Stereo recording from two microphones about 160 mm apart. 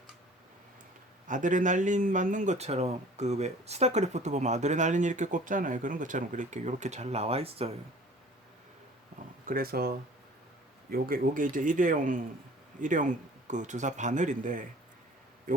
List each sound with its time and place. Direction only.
1.3 s speech: 55° right (ahead or behind); by 7.7 s 40° right (ahead or behind)
9.5 s speech: 70° right (ahead or behind)
10.9 s speech: 65° right (ahead or behind)